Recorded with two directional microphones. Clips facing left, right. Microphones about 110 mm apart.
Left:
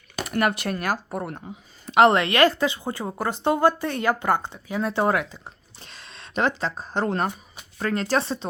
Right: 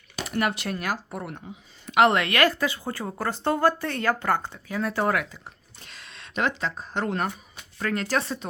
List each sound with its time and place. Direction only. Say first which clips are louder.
0.2 s speech: left 3 dB; 50° left (ahead or behind); by 8.4 s 30° left (ahead or behind)